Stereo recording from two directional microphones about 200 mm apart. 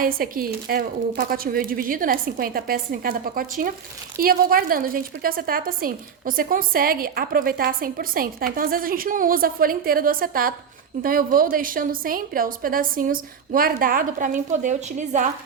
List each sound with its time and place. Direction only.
0.0 s a woman's voice: 45° right (ahead or behind)